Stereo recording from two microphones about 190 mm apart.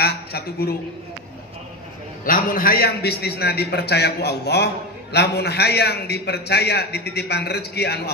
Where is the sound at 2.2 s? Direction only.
45° left (ahead or behind).